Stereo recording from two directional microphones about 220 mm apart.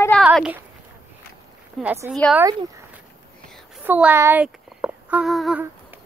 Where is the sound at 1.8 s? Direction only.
10° right (ahead or behind).